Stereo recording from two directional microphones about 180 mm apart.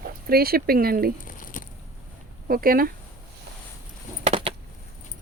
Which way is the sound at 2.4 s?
55° right (ahead or behind).